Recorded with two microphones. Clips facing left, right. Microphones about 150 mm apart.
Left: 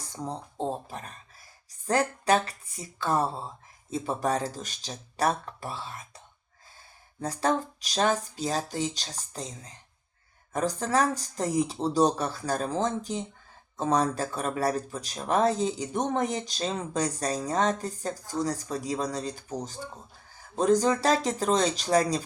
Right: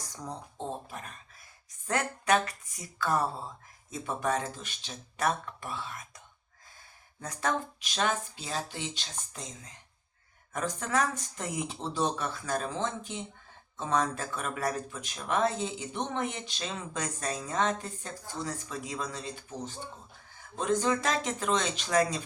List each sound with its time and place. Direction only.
0.0 s speech: 25° left (ahead or behind)